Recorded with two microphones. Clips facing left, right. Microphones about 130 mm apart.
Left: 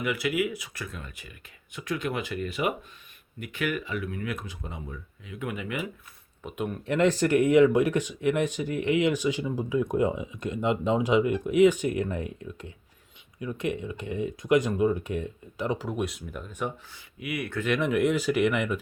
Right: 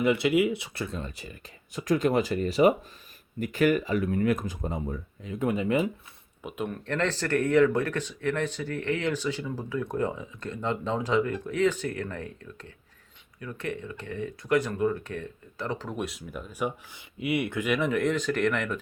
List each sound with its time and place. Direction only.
0.0 s speech: 30° right (ahead or behind)
6.4 s speech: centre (ahead or behind)
6.8 s speech: 10° left (ahead or behind); by 17.0 s 10° right (ahead or behind)
17.2 s speech: 25° right (ahead or behind)
17.6 s speech: 5° right (ahead or behind)